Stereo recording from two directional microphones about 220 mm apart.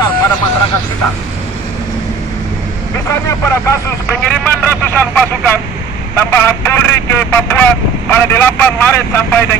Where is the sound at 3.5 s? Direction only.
10° left (ahead or behind).